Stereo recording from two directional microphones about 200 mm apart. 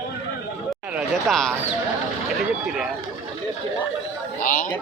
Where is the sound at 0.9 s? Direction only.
Centre (ahead or behind).